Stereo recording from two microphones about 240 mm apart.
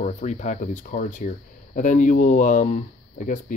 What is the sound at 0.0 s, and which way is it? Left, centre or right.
Speech, left.